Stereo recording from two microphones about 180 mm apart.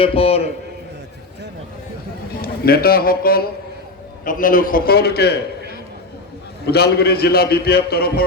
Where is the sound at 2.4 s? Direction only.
55° left (ahead or behind).